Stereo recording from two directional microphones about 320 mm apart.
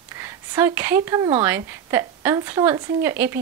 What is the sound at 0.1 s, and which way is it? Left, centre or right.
A woman's voice, centre.